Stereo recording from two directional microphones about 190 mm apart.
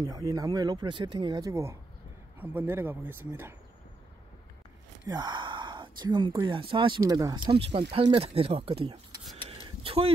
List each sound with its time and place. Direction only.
0.0 s speech: 20° right (ahead or behind)
5.0 s speech: 20° right (ahead or behind)
7.4 s speech: 30° right (ahead or behind)
9.4 s a sound: 30° right (ahead or behind)